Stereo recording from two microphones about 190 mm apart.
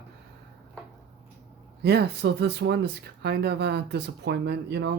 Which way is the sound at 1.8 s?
60° right (ahead or behind).